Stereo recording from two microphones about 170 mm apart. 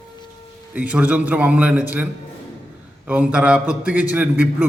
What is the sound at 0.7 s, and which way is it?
A man's voice, 10° right (ahead or behind).